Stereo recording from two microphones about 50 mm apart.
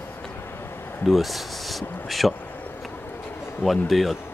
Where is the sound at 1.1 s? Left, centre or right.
Centre.